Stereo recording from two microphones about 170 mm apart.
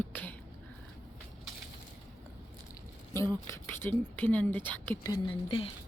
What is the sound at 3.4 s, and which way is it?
Speech, 15° left (ahead or behind).